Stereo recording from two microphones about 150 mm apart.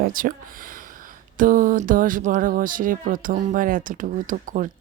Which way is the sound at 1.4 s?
65° right (ahead or behind).